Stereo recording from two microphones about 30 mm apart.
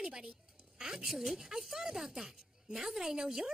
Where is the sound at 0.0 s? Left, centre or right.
Right.